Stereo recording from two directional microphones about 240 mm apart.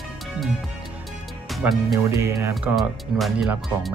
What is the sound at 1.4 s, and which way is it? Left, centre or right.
Speech, centre.